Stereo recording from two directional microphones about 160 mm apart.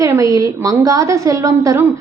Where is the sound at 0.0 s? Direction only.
20° right (ahead or behind).